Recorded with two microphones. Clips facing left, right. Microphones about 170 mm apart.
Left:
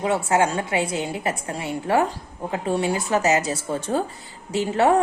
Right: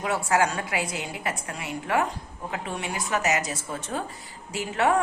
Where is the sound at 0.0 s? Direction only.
25° left (ahead or behind).